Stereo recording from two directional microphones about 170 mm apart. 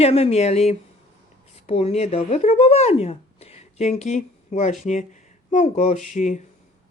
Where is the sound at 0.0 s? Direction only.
35° left (ahead or behind).